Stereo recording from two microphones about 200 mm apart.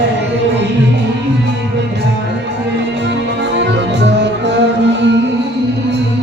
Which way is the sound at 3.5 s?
60° right (ahead or behind).